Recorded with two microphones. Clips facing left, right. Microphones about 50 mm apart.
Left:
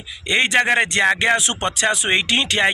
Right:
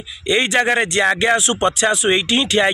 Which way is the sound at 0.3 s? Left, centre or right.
Left.